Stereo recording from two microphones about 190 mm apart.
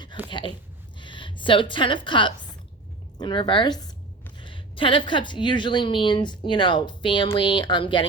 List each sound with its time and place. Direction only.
0.3 s a woman's voice: 25° left (ahead or behind)